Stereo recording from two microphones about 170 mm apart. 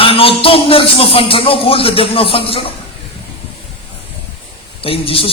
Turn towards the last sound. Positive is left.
turn(degrees=35)  # may be behind; listen again after turning